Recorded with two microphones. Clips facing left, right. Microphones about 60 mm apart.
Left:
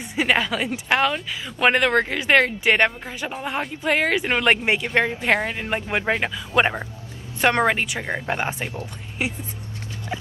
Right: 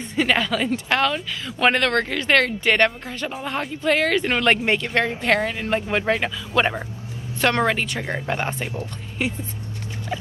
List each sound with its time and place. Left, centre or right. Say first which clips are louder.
0.0 s speech: even; centre